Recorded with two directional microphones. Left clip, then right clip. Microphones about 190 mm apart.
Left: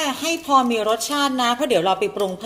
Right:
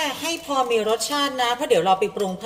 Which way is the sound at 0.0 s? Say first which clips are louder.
Left 2 dB; 30° left (ahead or behind).